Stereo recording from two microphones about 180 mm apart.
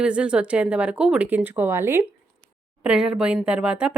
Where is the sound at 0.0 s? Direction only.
5° right (ahead or behind).